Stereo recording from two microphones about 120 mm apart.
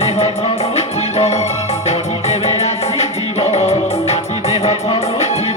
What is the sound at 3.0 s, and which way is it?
Music, 65° left (ahead or behind).